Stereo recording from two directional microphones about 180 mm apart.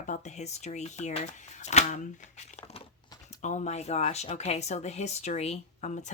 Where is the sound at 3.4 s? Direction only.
40° left (ahead or behind).